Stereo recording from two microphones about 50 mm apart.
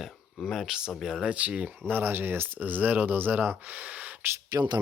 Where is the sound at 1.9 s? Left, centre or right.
Right.